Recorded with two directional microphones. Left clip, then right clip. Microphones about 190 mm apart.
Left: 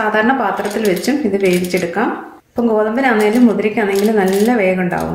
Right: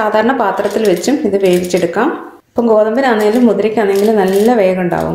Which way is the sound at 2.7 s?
20° right (ahead or behind).